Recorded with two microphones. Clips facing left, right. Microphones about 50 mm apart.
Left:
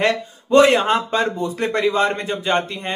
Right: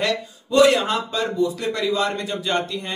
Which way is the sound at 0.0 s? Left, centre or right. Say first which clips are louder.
Left 4 dB; left.